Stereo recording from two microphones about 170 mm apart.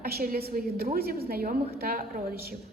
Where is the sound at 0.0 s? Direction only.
60° right (ahead or behind).